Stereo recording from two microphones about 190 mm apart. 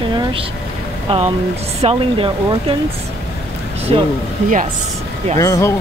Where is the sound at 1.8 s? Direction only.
30° right (ahead or behind).